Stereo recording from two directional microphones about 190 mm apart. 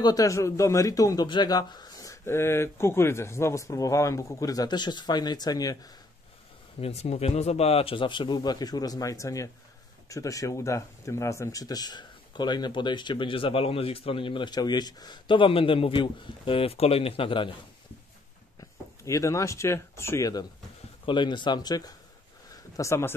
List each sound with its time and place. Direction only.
0.0 s a man's voice: 20° left (ahead or behind)
6.8 s speech: 35° left (ahead or behind)
18.6 s speech: 15° left (ahead or behind)
22.5 s a sound: 15° left (ahead or behind)